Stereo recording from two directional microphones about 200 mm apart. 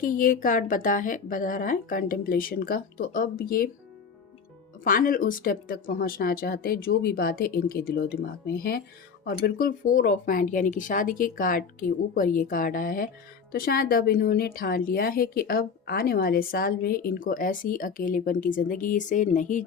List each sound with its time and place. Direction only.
0.0 s a woman's voice: 45° left (ahead or behind)
4.8 s a woman's voice: 45° left (ahead or behind)